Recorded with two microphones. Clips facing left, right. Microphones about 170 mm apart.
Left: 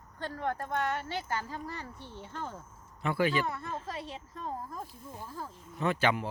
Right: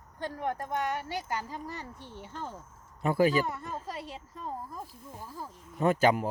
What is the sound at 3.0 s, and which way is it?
Speech, 40° right (ahead or behind).